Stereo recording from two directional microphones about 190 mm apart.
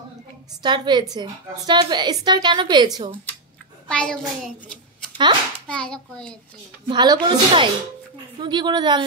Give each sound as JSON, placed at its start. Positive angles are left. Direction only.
{"t": 0.6, "sound": "a woman's voice", "side_deg": -25}
{"t": 3.9, "sound": "a child's voice", "side_deg": 5}
{"t": 6.9, "sound": "a woman's voice", "side_deg": -25}